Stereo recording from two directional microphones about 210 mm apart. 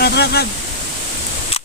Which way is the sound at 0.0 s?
50° left (ahead or behind).